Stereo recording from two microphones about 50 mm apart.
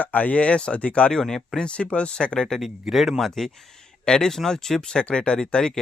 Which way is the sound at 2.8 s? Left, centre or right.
Centre.